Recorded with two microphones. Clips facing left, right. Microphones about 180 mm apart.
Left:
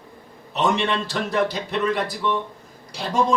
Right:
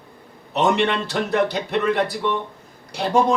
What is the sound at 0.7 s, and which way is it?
Speech, 60° right (ahead or behind).